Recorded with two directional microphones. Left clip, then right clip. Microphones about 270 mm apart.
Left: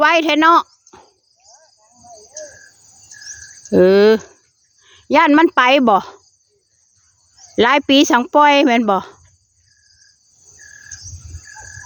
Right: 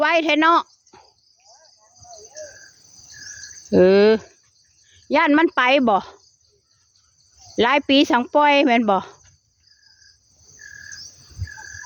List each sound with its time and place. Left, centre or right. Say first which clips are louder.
0.0 s a sound: left 4 dB; centre
3.7 s speech: left 3 dB; centre
7.5 s speech: left 4 dB; centre